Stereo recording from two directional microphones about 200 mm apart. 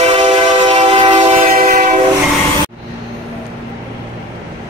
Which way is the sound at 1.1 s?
40° right (ahead or behind).